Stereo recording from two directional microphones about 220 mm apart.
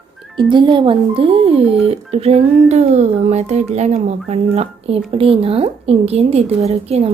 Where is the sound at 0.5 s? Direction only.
20° right (ahead or behind).